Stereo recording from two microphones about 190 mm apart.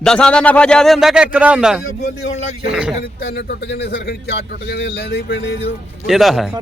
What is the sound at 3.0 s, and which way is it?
A man's voice, 60° left (ahead or behind).